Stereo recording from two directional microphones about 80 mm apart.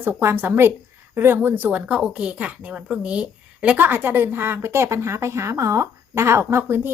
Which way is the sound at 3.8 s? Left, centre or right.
Right.